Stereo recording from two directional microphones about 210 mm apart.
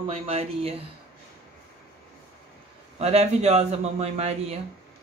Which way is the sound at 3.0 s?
30° right (ahead or behind).